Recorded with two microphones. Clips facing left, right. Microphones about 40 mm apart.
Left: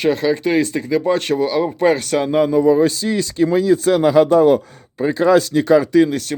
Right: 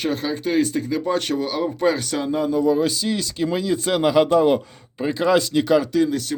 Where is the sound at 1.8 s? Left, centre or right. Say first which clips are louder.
Left 5 dB; left.